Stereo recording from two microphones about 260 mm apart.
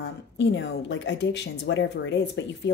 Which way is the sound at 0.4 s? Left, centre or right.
Left.